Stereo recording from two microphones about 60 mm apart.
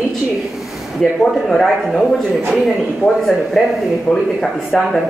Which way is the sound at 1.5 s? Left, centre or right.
Centre.